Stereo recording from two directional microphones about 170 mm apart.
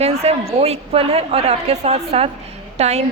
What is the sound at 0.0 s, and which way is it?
A woman's voice, 40° right (ahead or behind).